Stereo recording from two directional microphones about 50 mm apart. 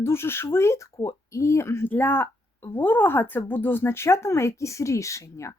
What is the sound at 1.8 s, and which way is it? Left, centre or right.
A woman's voice, left.